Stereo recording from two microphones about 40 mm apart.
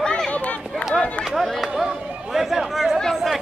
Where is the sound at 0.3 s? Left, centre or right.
Left.